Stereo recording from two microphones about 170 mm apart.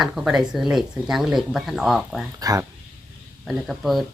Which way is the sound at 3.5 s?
Centre (ahead or behind).